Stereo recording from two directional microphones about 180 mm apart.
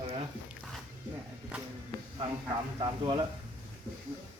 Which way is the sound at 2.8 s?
25° right (ahead or behind).